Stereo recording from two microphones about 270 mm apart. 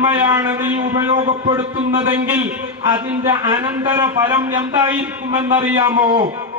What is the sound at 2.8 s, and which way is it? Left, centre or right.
A man's voice, centre.